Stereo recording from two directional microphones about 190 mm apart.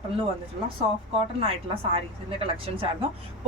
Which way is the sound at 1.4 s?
30° right (ahead or behind).